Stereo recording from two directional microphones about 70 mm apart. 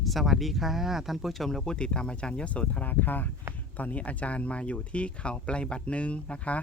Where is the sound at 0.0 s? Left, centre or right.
Centre.